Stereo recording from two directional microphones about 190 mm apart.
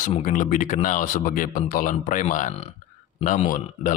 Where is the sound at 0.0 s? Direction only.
40° left (ahead or behind).